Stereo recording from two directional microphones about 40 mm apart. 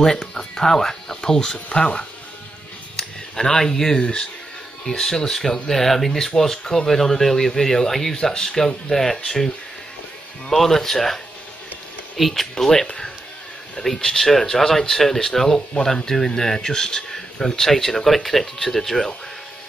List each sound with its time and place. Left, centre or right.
0.2 s speech: centre
1.7 s speech: left
3.0 s speech: centre
10.5 s speech: centre
12.2 s speech: centre
13.8 s speech: centre